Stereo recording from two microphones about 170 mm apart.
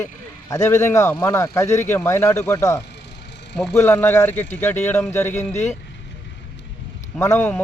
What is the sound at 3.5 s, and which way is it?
Speech, 5° left (ahead or behind).